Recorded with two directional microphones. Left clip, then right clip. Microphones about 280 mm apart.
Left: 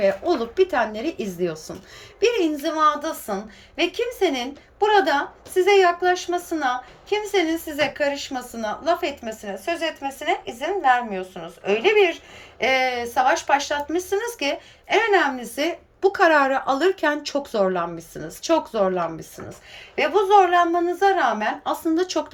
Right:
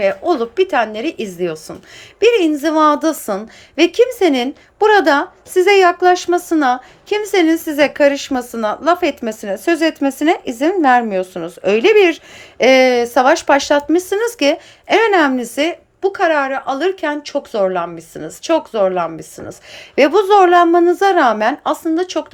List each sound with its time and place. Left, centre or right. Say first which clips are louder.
0.0 s a woman's voice: right 5 dB; centre
20.0 s a woman's voice: right 6 dB; centre